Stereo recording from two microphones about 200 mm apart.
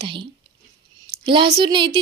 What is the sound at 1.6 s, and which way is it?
Speech, 25° right (ahead or behind).